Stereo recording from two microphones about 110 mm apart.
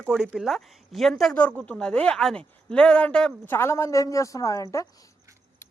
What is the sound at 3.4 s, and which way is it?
Speech, 20° left (ahead or behind).